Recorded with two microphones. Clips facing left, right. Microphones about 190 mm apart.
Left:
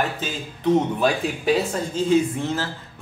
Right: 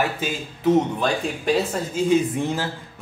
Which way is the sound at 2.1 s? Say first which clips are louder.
Even; 15° right (ahead or behind).